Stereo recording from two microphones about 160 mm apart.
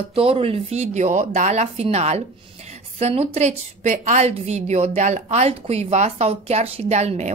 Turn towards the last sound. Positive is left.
turn(degrees=-45)  # may be behind; listen again after turning